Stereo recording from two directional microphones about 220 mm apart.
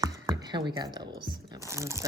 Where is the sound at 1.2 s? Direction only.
20° right (ahead or behind).